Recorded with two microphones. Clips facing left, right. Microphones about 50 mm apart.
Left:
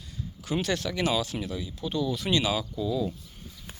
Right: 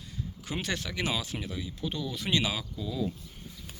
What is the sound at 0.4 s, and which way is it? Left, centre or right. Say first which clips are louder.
Speech: left 6 dB; centre.